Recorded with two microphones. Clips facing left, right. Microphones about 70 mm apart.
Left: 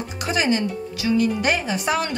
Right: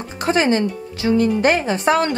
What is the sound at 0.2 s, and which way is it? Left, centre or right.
Speech, right.